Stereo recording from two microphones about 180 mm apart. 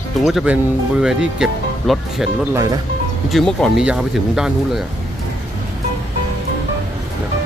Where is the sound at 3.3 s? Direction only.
Centre (ahead or behind).